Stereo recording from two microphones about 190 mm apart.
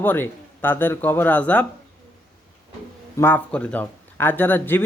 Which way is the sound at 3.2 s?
10° left (ahead or behind).